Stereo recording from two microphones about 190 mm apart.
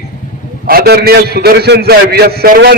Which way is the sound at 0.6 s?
55° right (ahead or behind).